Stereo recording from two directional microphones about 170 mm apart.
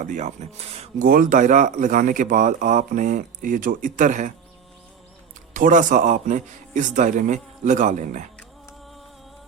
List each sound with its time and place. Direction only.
0.0 s speech: 45° right (ahead or behind)
1.0 s speech: 55° right (ahead or behind)
5.5 s speech: 50° right (ahead or behind)